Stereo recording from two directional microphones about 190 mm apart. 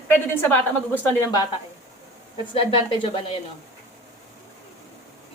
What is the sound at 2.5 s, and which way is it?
Speech, 30° left (ahead or behind).